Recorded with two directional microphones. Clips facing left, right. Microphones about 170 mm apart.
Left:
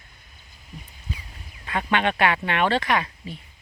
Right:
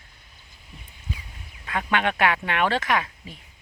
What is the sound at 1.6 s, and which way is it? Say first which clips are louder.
Speech: left 1 dB; centre (ahead or behind).